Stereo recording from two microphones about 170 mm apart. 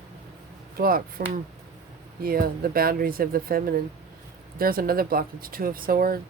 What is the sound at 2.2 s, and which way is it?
Speech, 60° right (ahead or behind).